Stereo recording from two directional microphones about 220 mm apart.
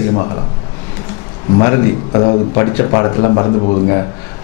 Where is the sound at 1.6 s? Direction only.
15° left (ahead or behind).